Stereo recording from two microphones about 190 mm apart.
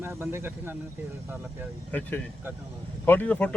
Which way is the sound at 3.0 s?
10° left (ahead or behind).